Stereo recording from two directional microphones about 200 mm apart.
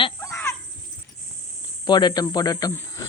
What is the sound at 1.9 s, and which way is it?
Speech, 20° left (ahead or behind).